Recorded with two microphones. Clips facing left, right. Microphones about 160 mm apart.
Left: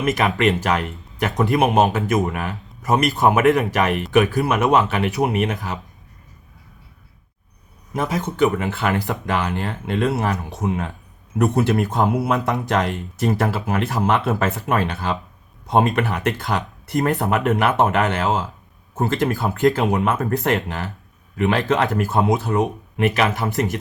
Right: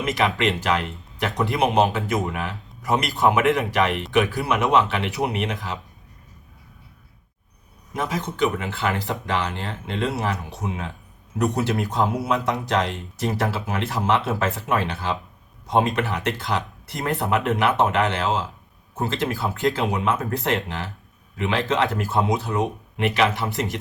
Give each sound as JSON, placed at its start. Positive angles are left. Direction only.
{"t": 0.0, "sound": "speech", "side_deg": 45}
{"t": 7.9, "sound": "speech", "side_deg": 45}